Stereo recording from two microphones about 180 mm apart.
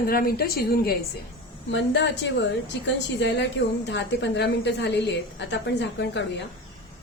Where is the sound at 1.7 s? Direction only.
80° left.